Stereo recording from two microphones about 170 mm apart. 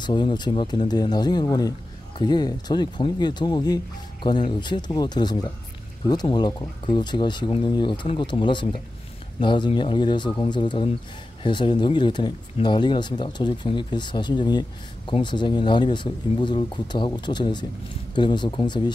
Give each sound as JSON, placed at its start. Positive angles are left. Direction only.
{"t": 0.0, "sound": "speech", "side_deg": 25}